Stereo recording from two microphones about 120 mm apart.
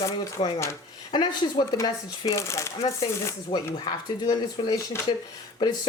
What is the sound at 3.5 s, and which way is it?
Speech, 50° left (ahead or behind).